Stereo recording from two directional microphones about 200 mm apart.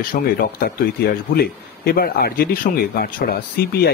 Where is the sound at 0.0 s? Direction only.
45° left (ahead or behind).